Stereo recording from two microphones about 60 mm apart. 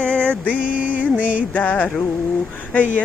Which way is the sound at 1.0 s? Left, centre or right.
Right.